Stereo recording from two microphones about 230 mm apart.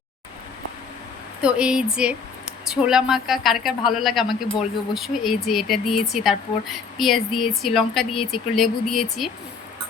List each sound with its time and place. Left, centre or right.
1.4 s speech: centre